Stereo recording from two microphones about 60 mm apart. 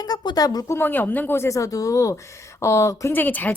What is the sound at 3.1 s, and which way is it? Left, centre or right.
Speech, left.